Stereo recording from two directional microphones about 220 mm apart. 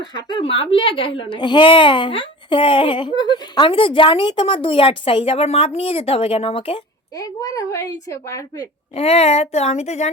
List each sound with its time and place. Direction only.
0.3 s a child's voice: 20° left (ahead or behind)
7.2 s a woman's voice: 15° left (ahead or behind)
9.0 s a child's voice: 30° left (ahead or behind)